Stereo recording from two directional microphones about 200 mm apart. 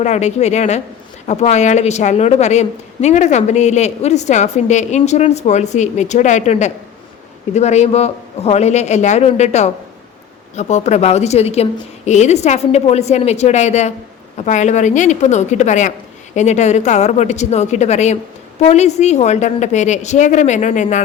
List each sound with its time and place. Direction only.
0.0 s a woman's voice: 35° left (ahead or behind)